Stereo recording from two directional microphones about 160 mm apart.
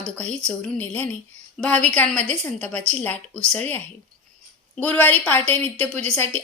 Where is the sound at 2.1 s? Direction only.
45° right (ahead or behind).